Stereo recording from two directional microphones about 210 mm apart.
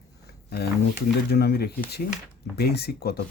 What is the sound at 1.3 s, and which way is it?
Speech, 50° left (ahead or behind).